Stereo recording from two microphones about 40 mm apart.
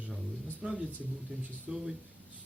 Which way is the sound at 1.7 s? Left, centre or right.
Centre.